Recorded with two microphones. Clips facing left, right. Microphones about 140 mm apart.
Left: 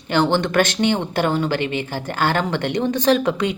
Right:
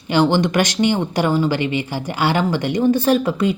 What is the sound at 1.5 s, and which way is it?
Speech, 55° left (ahead or behind).